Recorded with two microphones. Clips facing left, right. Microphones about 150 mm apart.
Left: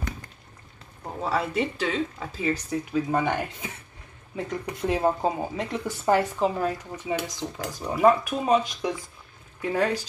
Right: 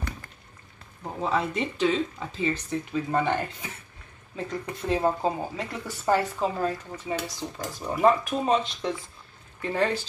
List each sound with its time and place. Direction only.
1.3 s speech: 5° left (ahead or behind)
7.8 s speech: centre (ahead or behind)